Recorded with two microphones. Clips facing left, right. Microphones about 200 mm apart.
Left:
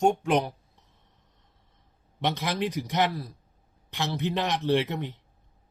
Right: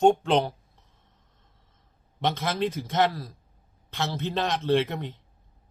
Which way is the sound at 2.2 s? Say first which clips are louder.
Right 1 dB; 15° left (ahead or behind).